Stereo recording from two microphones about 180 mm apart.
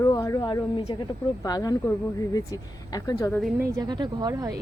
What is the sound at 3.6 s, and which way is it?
Speech, 25° right (ahead or behind).